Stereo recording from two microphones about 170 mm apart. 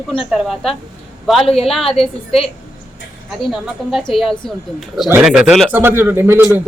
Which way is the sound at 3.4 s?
5° right (ahead or behind).